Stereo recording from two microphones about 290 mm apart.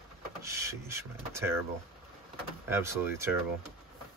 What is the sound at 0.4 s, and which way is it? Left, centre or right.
Speech, centre.